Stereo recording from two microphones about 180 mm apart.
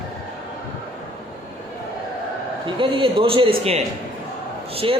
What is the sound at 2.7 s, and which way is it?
A man's voice, 30° right (ahead or behind).